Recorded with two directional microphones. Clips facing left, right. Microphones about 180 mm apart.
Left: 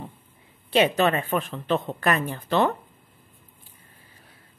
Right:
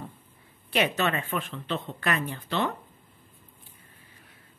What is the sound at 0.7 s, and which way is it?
Speech, 30° left (ahead or behind).